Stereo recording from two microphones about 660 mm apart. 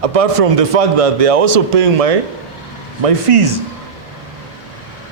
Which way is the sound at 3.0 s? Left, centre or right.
Right.